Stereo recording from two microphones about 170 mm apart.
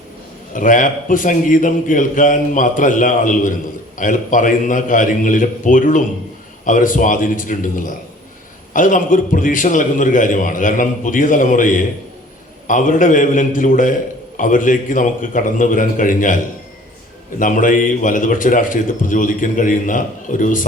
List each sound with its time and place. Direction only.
0.5 s a man's voice: 50° left (ahead or behind)
17.4 s a man's voice: 50° left (ahead or behind)